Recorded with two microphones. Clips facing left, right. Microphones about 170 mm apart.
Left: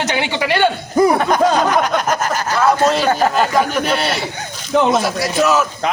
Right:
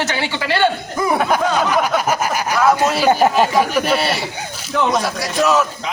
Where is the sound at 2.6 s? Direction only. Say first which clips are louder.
Left 1 dB; 5° right (ahead or behind).